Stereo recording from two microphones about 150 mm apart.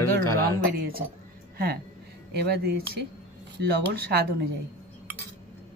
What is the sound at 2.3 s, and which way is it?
Speech, 90° right.